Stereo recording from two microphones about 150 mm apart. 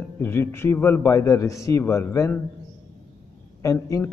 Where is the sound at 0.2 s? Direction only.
15° left (ahead or behind).